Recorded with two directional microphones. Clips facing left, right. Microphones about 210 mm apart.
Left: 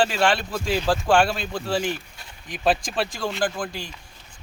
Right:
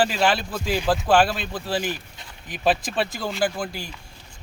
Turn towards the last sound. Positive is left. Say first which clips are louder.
# right 1 dB
turn(degrees=-5)  # may be behind; listen again after turning